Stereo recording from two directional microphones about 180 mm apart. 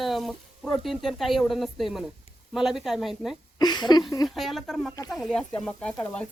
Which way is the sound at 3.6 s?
25° left (ahead or behind).